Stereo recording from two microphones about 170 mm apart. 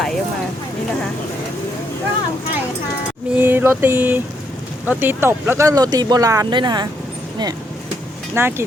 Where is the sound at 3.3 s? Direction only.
10° right (ahead or behind).